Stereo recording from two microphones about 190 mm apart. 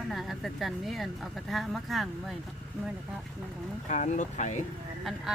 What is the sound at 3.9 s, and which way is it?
Speech, 40° left (ahead or behind).